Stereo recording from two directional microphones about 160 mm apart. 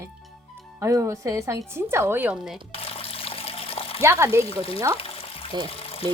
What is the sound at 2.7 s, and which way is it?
Water, 35° left (ahead or behind).